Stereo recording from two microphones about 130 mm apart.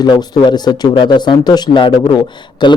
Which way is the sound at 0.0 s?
30° left (ahead or behind).